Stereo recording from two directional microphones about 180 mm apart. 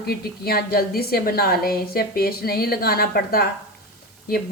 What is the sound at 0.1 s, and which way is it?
A woman's voice, 60° left (ahead or behind).